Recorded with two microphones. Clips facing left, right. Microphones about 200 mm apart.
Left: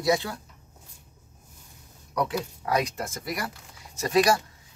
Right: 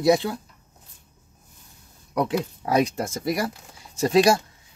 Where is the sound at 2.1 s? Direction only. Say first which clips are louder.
Right 4 dB; 25° right (ahead or behind).